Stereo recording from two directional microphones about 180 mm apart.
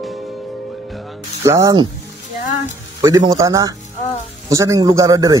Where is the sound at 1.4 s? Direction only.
15° right (ahead or behind).